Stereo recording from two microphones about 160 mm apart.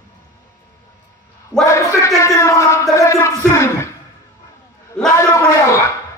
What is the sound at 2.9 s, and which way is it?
Music, 20° left (ahead or behind).